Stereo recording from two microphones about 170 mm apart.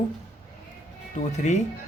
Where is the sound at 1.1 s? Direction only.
45° left (ahead or behind).